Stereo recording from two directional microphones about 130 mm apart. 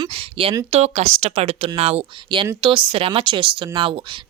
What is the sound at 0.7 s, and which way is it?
Speech, 60° right (ahead or behind).